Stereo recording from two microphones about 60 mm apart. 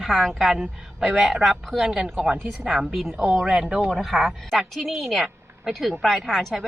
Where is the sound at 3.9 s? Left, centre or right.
Centre.